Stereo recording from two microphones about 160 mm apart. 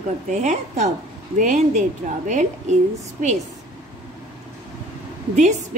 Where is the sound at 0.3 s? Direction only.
45° right (ahead or behind).